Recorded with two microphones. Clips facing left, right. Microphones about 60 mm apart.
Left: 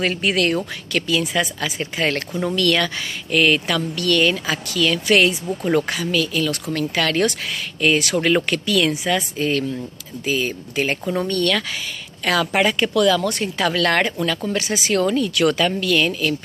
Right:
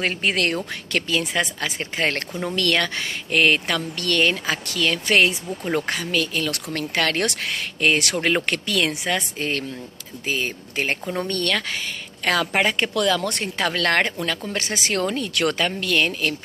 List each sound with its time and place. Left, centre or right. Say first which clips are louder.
0.0 s speech: left 3 dB; right
6.5 s speech: left 3 dB; right